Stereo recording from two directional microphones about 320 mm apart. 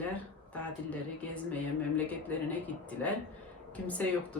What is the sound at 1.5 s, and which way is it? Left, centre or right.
Speech, centre.